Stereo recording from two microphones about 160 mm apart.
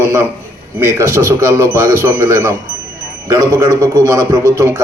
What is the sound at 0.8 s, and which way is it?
A man's voice, 15° right (ahead or behind).